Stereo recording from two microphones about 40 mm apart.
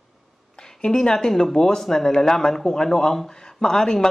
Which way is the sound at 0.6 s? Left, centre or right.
Centre.